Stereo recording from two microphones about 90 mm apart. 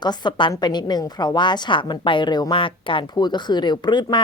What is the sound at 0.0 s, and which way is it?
A woman's voice, 55° left (ahead or behind).